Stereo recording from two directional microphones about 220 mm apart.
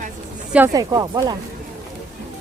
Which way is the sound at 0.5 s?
15° right (ahead or behind).